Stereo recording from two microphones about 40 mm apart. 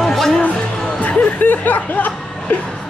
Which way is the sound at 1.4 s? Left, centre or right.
Left.